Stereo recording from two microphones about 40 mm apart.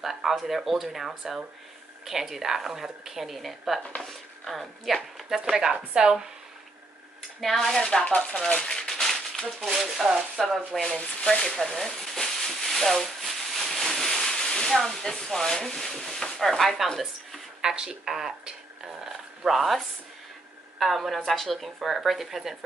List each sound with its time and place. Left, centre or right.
0.0 s a woman's voice: centre
5.4 s a woman's voice: centre
7.6 s speech: centre
8.5 s a sound: left; by 9.7 s centre
10.0 s speech: centre
10.7 s speech: centre
11.2 s a sound: centre
14.9 s speech: centre
17.6 s a woman's voice: centre
19.0 s a sound: centre
20.8 s speech: centre